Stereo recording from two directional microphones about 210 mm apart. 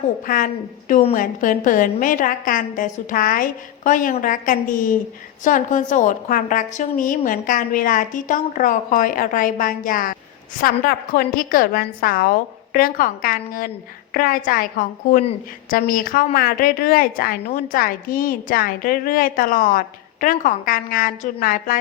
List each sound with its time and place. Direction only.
0.3 s a woman's voice: 40° left (ahead or behind)